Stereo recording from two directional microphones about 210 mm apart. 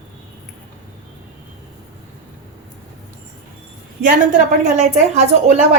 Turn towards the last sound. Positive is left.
turn(degrees=-35)  # may be behind; listen again after turning